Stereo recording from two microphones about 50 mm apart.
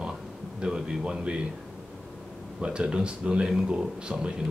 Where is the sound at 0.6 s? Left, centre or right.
Centre.